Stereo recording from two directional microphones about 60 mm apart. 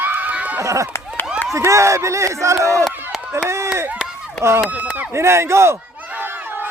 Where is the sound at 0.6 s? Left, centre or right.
Right.